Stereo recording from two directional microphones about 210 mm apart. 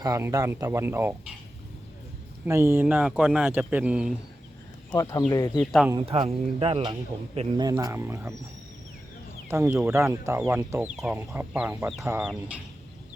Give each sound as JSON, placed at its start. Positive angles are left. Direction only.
{"t": 0.0, "sound": "speech", "side_deg": -15}
{"t": 2.5, "sound": "speech", "side_deg": -10}
{"t": 4.9, "sound": "speech", "side_deg": 20}
{"t": 6.0, "sound": "speech", "side_deg": -25}
{"t": 9.5, "sound": "speech", "side_deg": -10}